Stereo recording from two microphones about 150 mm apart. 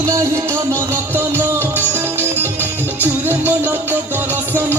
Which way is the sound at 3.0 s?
15° right (ahead or behind).